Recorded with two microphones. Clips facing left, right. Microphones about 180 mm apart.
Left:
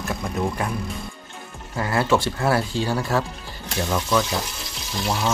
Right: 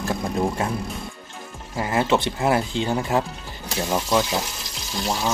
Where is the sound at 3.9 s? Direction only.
30° right (ahead or behind).